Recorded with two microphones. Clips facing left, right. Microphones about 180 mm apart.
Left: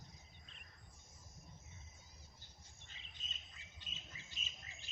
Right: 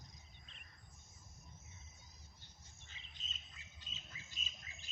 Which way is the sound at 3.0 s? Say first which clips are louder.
Even; 60° left (ahead or behind).